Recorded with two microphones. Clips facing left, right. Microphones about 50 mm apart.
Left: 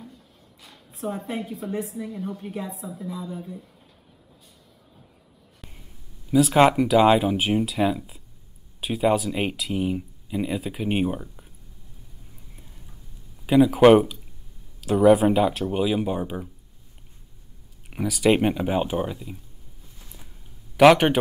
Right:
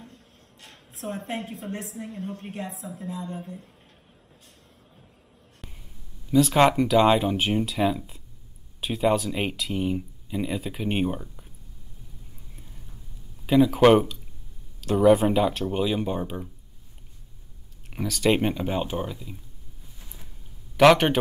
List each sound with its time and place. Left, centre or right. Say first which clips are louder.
1.0 s a woman's voice: left 2 dB; right
5.6 s a sound: even; centre
6.3 s speech: left 2 dB; centre
13.5 s speech: left 3 dB; centre
17.8 s speech: left 3 dB; centre
20.7 s a man's voice: left 2 dB; centre